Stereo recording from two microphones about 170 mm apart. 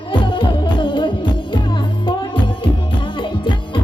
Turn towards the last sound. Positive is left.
turn(degrees=30)  # may be behind; listen again after turning